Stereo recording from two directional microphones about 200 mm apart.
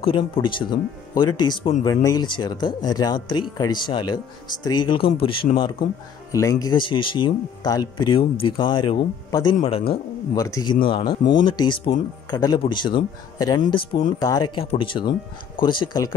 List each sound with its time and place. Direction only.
0.0 s speech: 25° left (ahead or behind)
6.3 s speech: 15° left (ahead or behind)
10.3 s speech: 15° left (ahead or behind)